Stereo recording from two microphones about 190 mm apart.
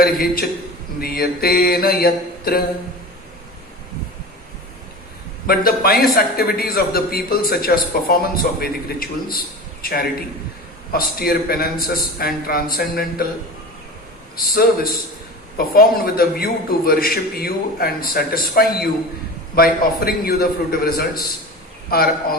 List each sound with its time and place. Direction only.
0.0 s a man's voice: 50° left (ahead or behind)
5.5 s a man's voice: 55° left (ahead or behind)
14.3 s a man's voice: 50° left (ahead or behind)